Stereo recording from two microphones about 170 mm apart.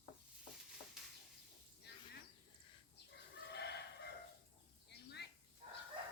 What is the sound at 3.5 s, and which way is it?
Chicken, 80° left.